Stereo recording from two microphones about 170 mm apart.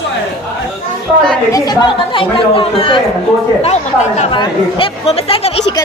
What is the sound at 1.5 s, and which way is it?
Speech, 25° left (ahead or behind).